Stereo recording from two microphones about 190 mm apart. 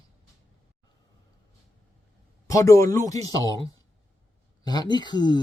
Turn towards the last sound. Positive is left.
turn(degrees=25)  # may be behind; listen again after turning